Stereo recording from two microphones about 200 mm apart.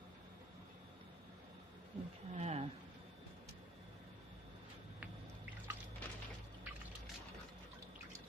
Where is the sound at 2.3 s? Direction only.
35° right (ahead or behind).